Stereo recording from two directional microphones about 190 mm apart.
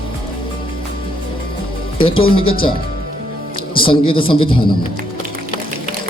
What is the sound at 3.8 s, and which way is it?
Speech, 25° left (ahead or behind).